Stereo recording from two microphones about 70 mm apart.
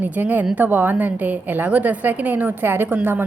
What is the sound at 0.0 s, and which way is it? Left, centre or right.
A woman's voice, right.